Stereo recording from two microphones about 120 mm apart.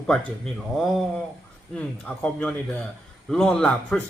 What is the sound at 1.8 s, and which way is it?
Speech, 10° left (ahead or behind).